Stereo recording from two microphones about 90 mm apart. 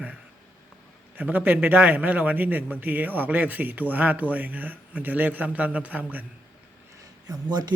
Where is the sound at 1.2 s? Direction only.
20° right (ahead or behind).